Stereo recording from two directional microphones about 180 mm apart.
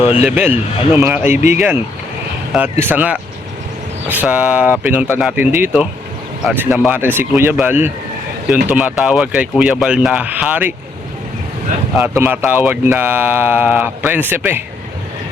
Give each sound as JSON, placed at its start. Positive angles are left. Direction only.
{"t": 0.0, "sound": "speech", "side_deg": 35}
{"t": 0.5, "sound": "speech", "side_deg": -10}
{"t": 11.9, "sound": "speech", "side_deg": -10}